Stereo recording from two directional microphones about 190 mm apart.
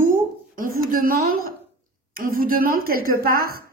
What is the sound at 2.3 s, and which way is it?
A woman's voice, 50° right (ahead or behind).